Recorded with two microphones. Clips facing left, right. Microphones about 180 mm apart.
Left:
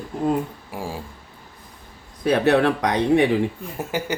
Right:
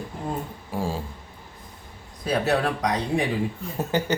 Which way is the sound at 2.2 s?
65° left (ahead or behind).